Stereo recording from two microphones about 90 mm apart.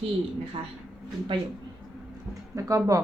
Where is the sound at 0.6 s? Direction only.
75° right (ahead or behind).